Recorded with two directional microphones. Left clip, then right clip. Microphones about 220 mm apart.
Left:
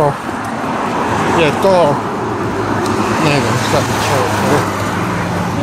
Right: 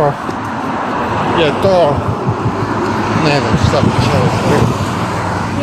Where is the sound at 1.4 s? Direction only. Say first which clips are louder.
Even; 10° left (ahead or behind).